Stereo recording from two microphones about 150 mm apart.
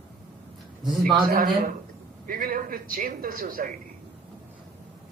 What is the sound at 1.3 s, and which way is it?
A man's voice, 65° right (ahead or behind).